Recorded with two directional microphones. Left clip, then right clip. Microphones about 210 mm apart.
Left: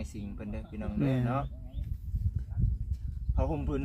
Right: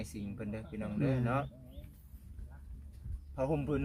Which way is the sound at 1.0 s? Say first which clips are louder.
Left 3 dB; 35° left (ahead or behind).